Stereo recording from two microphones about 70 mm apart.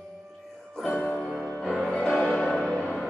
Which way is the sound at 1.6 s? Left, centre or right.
Centre.